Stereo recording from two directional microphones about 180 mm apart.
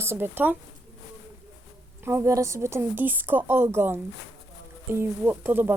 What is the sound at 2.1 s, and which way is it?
Speech, 15° right (ahead or behind).